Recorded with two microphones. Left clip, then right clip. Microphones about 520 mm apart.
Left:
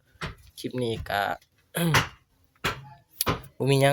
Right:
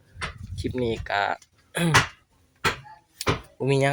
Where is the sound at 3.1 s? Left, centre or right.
Left.